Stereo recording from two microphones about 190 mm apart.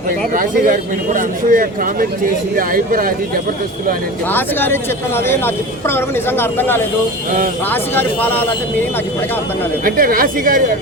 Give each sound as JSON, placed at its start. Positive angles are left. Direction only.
{"t": 0.3, "sound": "a man's voice", "side_deg": -45}
{"t": 4.3, "sound": "speech", "side_deg": 10}
{"t": 9.8, "sound": "a man's voice", "side_deg": -50}